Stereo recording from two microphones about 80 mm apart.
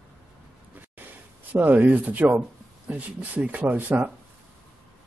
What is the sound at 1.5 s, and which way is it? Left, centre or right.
A man's voice, right.